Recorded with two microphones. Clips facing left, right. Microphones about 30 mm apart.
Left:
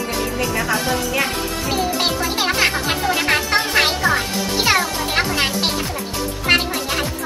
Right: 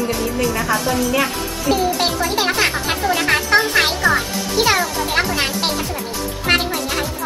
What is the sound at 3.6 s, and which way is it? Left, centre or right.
Music, centre.